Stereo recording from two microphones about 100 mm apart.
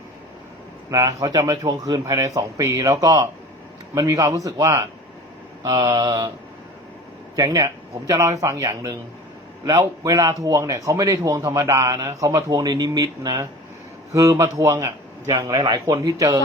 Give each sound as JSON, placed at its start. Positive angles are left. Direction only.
{"t": 0.9, "sound": "a man's voice", "side_deg": -35}
{"t": 2.0, "sound": "speech", "side_deg": -30}
{"t": 7.3, "sound": "speech", "side_deg": -35}
{"t": 15.5, "sound": "a man's voice", "side_deg": -45}
{"t": 15.9, "sound": "speech", "side_deg": -35}